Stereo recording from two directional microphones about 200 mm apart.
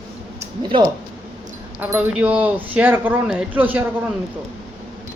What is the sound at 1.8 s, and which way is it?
Speech, 10° right (ahead or behind).